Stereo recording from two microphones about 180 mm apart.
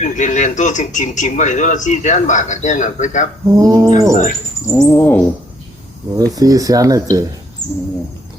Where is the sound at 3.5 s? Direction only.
20° right (ahead or behind).